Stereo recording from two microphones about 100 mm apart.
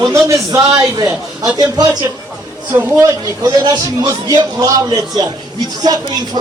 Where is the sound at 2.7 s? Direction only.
35° right (ahead or behind).